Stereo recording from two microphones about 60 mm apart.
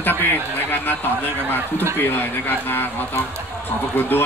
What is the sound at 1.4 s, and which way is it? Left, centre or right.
Speech, left.